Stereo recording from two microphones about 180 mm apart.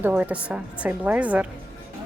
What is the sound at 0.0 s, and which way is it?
A woman's voice, 10° right (ahead or behind).